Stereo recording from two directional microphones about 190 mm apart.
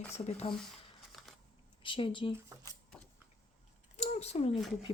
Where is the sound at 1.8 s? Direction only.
25° left (ahead or behind).